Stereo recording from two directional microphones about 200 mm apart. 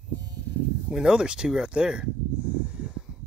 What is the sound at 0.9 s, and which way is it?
Speech, 5° right (ahead or behind).